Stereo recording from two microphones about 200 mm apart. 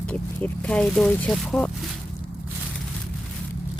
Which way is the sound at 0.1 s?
5° left (ahead or behind).